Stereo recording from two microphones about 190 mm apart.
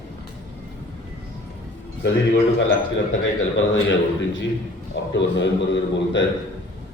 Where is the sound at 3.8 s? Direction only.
70° left (ahead or behind).